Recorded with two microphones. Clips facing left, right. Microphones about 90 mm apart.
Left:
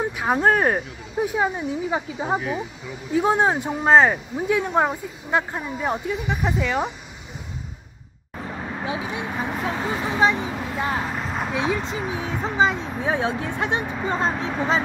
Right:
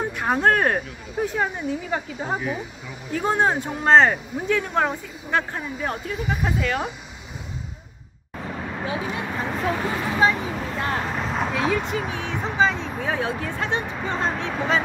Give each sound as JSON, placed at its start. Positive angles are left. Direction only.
{"t": 0.0, "sound": "speech", "side_deg": 5}
{"t": 8.7, "sound": "speech", "side_deg": 15}
{"t": 10.7, "sound": "vehicle", "side_deg": 10}
{"t": 11.5, "sound": "speech", "side_deg": 20}